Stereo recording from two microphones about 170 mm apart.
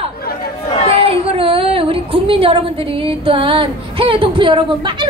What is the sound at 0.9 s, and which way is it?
Speech, 35° right (ahead or behind).